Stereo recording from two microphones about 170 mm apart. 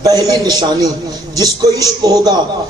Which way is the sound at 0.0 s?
20° right (ahead or behind).